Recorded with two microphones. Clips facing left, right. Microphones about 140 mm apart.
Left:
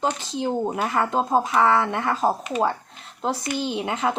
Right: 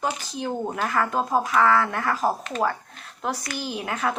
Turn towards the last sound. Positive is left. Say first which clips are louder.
# left 3 dB
turn(degrees=20)  # may be behind; listen again after turning